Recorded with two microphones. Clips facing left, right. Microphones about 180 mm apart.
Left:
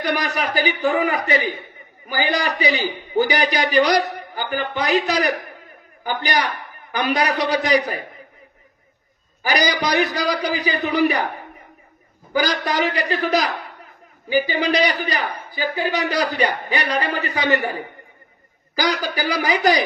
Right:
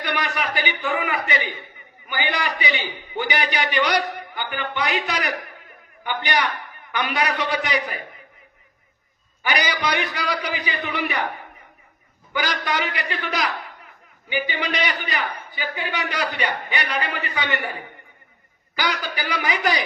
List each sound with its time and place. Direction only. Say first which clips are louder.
0.0 s a man's voice: left 4 dB; 40° left (ahead or behind)
9.4 s a man's voice: left 4 dB; 40° left (ahead or behind)